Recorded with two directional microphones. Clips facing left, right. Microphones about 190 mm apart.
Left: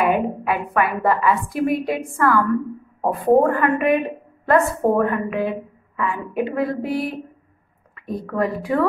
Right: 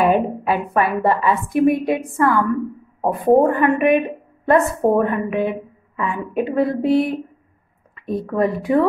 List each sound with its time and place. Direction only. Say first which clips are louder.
0.0 s a woman's voice: right 3 dB; 30° right (ahead or behind)
8.4 s a woman's voice: right 3 dB; 25° right (ahead or behind)